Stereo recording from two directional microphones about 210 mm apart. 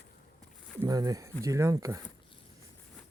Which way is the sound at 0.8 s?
20° right (ahead or behind).